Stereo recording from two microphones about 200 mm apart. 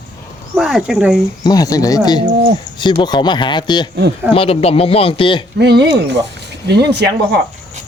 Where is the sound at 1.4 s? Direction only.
20° left (ahead or behind).